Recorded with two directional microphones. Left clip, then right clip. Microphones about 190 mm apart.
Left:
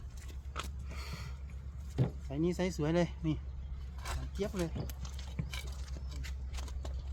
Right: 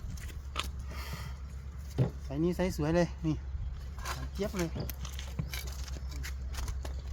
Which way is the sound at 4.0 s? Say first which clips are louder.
Right 3 dB; 10° right (ahead or behind).